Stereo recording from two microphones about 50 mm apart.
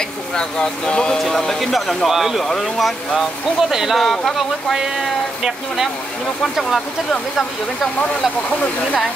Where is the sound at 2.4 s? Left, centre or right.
Centre.